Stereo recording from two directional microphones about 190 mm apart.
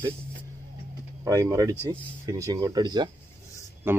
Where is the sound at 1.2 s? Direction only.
20° right (ahead or behind).